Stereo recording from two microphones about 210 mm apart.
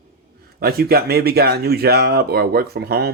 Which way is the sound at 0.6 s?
45° right (ahead or behind).